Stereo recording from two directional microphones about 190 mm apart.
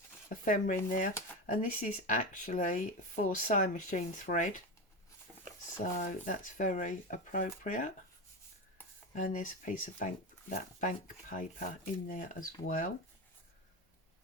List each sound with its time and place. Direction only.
0.3 s speech: 45° left (ahead or behind)
5.8 s speech: 45° left (ahead or behind)
9.1 s speech: 40° left (ahead or behind)